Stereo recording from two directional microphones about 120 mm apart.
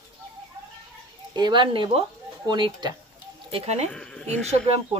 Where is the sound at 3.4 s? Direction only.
55° right (ahead or behind).